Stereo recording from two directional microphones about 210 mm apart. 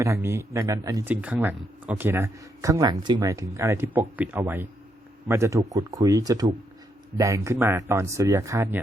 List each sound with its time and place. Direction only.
0.0 s speech: 15° right (ahead or behind)